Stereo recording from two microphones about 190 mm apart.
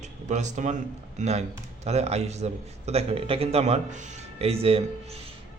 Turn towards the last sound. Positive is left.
turn(degrees=-30)  # may be behind; listen again after turning